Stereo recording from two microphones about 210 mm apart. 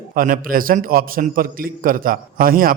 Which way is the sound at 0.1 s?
40° right (ahead or behind).